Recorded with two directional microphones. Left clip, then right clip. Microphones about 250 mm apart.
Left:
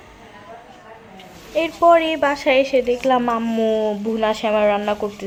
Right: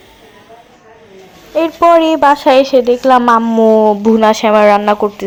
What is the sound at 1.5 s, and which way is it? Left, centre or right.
A woman's voice, centre.